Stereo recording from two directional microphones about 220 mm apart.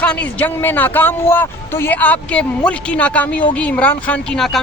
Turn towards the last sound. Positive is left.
turn(degrees=5)  # may be behind; listen again after turning